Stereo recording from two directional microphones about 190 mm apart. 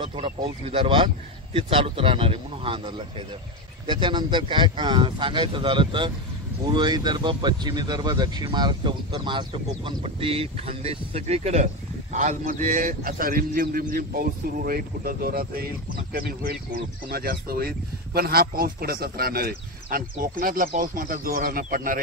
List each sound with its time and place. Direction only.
0.1 s speech: 30° right (ahead or behind); by 22.0 s 45° right (ahead or behind)